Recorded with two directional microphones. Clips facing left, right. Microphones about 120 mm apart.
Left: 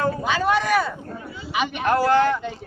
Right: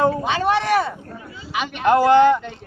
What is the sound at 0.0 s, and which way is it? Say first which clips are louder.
A man's voice: right 3 dB; 25° right (ahead or behind).